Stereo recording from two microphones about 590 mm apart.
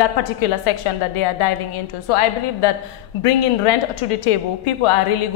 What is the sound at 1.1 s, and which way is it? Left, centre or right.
A woman's voice, left.